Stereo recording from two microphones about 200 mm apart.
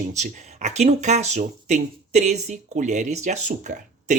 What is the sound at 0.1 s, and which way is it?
Speech, 35° right (ahead or behind).